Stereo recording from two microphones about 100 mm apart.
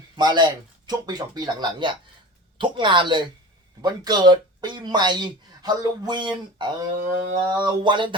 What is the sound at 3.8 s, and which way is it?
Speech, 40° right (ahead or behind).